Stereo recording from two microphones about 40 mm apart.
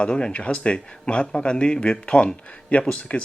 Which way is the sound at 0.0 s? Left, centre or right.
Left.